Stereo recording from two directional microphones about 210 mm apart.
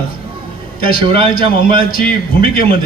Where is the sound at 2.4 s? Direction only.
45° left (ahead or behind).